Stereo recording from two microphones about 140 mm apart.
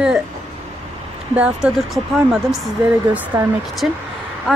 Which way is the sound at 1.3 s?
5° right (ahead or behind).